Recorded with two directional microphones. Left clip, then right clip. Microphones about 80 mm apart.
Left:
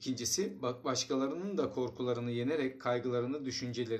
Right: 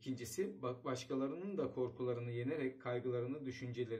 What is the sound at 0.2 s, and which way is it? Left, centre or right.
Speech, left.